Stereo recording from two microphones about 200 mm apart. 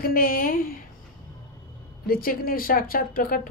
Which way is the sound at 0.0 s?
45° left (ahead or behind).